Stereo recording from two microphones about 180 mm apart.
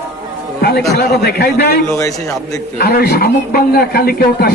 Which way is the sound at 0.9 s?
65° left (ahead or behind).